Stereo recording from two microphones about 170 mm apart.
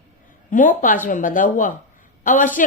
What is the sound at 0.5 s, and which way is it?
A woman's voice, 50° left (ahead or behind).